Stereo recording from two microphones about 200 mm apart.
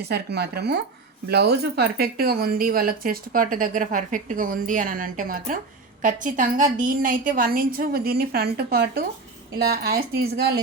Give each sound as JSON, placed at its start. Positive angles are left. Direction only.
{"t": 0.0, "sound": "speech", "side_deg": -55}